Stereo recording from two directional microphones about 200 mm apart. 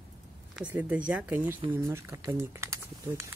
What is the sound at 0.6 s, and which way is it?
Speech, 5° right (ahead or behind).